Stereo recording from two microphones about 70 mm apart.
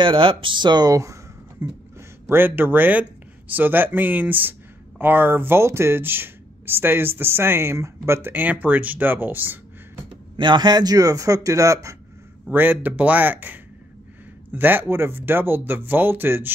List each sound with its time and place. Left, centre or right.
0.6 s speech: right
1.6 s speech: right
8.2 s speech: right
10.5 s a man's voice: right
12.4 s speech: right